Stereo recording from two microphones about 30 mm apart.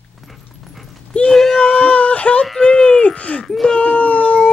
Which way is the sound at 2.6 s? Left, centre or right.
Left.